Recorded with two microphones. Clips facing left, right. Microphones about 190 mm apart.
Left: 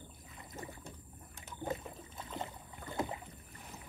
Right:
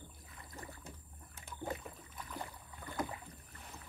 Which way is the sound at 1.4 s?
20° left (ahead or behind).